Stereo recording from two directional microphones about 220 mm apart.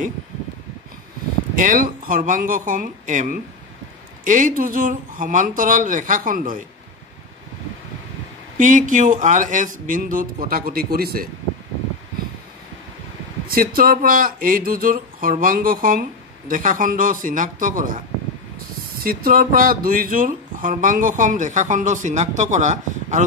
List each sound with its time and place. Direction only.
1.5 s speech: 40° right (ahead or behind)
8.5 s speech: 35° right (ahead or behind)
13.5 s speech: 40° right (ahead or behind)
19.0 s speech: 40° right (ahead or behind)